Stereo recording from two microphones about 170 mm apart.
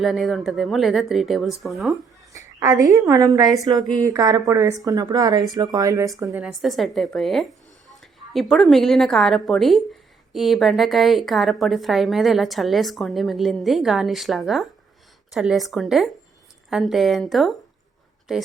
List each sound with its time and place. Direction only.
0.0 s a woman's voice: centre (ahead or behind)
2.3 s a sound: 15° right (ahead or behind)
3.1 s speech: 20° right (ahead or behind)
6.3 s a woman's voice: centre (ahead or behind)